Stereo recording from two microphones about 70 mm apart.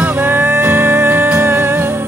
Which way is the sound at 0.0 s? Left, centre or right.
Right.